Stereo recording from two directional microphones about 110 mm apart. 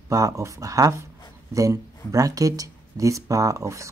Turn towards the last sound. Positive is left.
turn(degrees=-30)  # may be behind; listen again after turning